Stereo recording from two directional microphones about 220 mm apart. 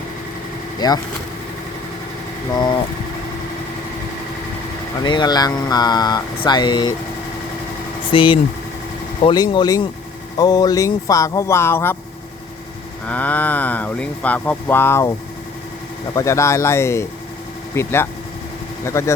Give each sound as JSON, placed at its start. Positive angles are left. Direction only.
{"t": 0.8, "sound": "speech", "side_deg": 20}
{"t": 5.0, "sound": "speech", "side_deg": 20}
{"t": 8.1, "sound": "speech", "side_deg": 25}
{"t": 13.1, "sound": "speech", "side_deg": 5}
{"t": 16.1, "sound": "speech", "side_deg": 15}